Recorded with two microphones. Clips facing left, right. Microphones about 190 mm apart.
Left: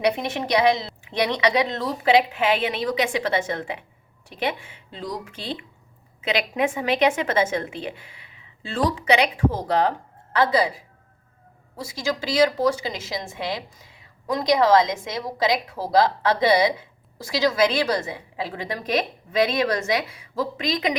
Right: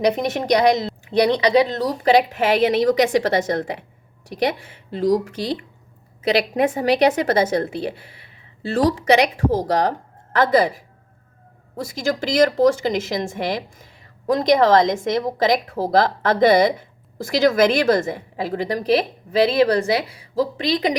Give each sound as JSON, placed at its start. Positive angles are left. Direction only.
{"t": 0.0, "sound": "a woman's voice", "side_deg": -45}
{"t": 12.0, "sound": "speech", "side_deg": -50}
{"t": 15.4, "sound": "a woman's voice", "side_deg": -50}